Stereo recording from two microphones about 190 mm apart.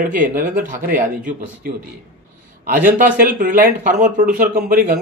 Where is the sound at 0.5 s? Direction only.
40° right (ahead or behind).